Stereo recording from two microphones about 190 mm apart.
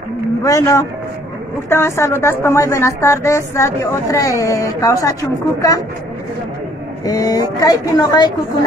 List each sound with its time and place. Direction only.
0.4 s speech: 15° left (ahead or behind)
7.1 s speech: 20° left (ahead or behind)